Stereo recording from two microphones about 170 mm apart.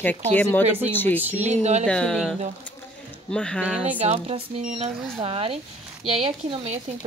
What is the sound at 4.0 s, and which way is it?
Speech, 40° right (ahead or behind).